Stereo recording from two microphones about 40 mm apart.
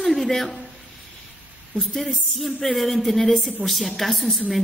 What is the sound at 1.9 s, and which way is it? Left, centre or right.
A woman's voice, centre.